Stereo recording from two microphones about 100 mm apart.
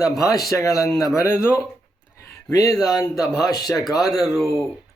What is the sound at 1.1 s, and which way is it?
Speech, 25° left (ahead or behind).